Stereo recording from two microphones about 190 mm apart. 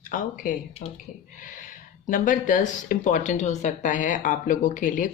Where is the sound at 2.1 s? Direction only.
45° left (ahead or behind).